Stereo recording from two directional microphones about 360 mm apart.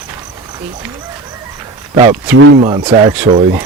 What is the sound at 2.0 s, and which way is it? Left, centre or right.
Speech, centre.